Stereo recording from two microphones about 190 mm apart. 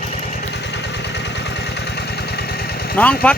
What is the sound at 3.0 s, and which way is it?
Speech, 10° left (ahead or behind).